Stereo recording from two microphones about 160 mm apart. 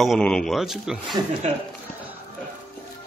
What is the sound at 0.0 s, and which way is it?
Speech, centre (ahead or behind).